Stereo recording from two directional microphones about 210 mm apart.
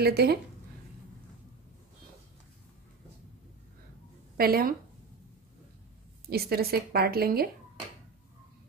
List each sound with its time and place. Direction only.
0.0 s a woman's voice: 50° right (ahead or behind)
4.4 s a woman's voice: 45° right (ahead or behind)
6.2 s a woman's voice: 45° right (ahead or behind)